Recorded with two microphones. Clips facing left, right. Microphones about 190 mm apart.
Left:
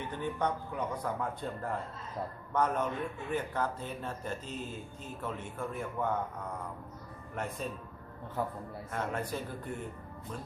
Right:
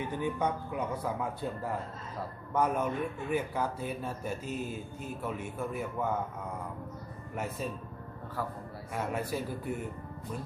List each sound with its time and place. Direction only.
0.0 s speech: 10° right (ahead or behind)
7.3 s speech: 5° right (ahead or behind)
8.4 s a man's voice: 20° left (ahead or behind)
8.9 s speech: 10° right (ahead or behind)